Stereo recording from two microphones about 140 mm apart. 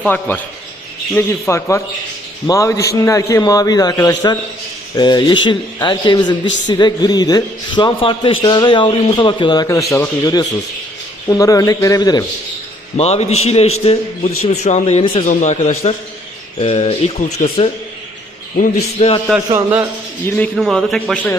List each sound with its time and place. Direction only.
0.0 s a man's voice: 15° left (ahead or behind); by 9.6 s 35° left (ahead or behind)
9.6 s a man's voice: 20° left (ahead or behind)
13.0 s speech: 50° left (ahead or behind)
15.3 s a man's voice: 60° left (ahead or behind)
18.5 s a man's voice: 80° left
18.9 s speech: 45° left (ahead or behind)
20.2 s speech: 10° left (ahead or behind)
20.6 s a man's voice: centre (ahead or behind)